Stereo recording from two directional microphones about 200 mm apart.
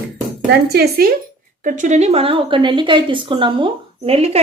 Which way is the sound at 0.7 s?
50° right (ahead or behind).